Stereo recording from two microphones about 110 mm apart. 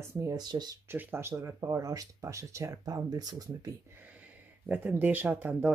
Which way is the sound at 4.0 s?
15° right (ahead or behind).